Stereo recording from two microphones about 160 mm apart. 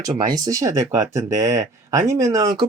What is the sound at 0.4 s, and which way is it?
Speech, 20° right (ahead or behind).